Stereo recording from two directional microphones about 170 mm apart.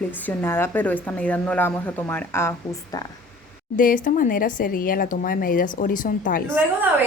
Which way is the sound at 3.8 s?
55° left (ahead or behind).